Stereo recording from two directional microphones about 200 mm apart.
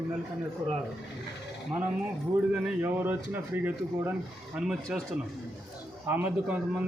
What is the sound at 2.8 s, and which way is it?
A man's voice, 10° right (ahead or behind).